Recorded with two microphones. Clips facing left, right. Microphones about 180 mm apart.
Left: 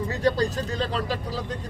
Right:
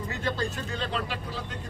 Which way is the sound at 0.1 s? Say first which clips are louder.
Left 7 dB; 35° left (ahead or behind).